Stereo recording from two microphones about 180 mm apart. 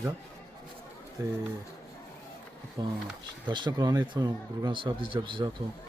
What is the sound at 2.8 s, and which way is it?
Speech, 20° right (ahead or behind).